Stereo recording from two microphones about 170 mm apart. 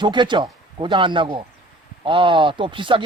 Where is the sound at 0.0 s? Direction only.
25° right (ahead or behind).